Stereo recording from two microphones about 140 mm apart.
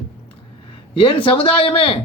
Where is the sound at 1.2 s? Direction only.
40° left (ahead or behind).